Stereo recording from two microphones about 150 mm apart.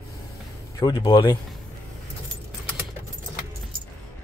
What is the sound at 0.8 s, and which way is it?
Speech, 25° left (ahead or behind).